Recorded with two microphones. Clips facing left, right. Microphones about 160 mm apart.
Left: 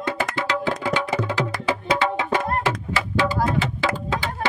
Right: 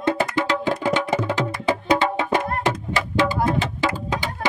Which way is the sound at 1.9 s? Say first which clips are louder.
Right 2 dB; 15° right (ahead or behind).